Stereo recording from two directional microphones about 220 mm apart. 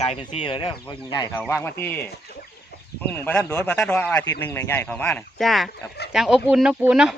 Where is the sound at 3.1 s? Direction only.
5° left (ahead or behind).